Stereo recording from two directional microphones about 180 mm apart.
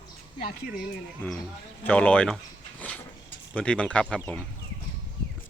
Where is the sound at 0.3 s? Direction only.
55° left (ahead or behind).